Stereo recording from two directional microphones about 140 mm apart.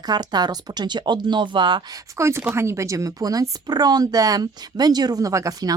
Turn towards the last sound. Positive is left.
turn(degrees=-25)  # may be behind; listen again after turning